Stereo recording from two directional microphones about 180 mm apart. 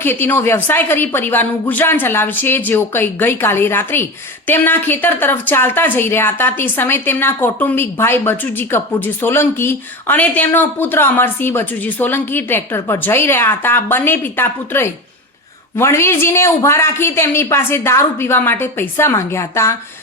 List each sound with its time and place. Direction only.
0.0 s speech: 10° left (ahead or behind)